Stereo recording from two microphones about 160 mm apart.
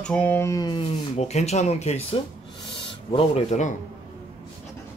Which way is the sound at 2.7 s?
35° left (ahead or behind).